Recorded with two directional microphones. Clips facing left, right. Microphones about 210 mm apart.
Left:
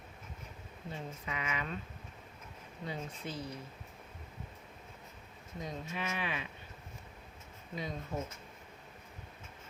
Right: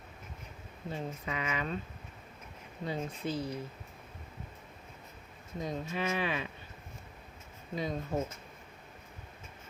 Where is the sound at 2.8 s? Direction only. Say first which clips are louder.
Right 6 dB; 35° right (ahead or behind).